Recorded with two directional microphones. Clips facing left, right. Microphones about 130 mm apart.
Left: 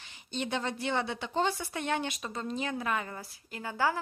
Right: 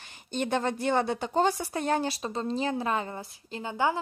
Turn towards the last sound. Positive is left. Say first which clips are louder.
# right 3 dB
turn(degrees=-20)  # may be behind; listen again after turning